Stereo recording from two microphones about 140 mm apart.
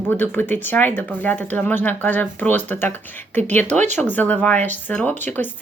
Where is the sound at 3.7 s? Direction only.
55° right (ahead or behind).